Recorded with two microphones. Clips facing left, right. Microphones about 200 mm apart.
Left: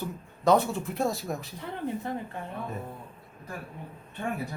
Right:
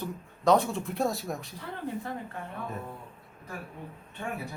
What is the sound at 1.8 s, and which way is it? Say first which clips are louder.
Speech: left 3 dB; 25° left (ahead or behind).